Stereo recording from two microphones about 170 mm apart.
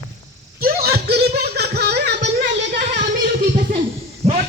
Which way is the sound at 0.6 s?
65° right (ahead or behind).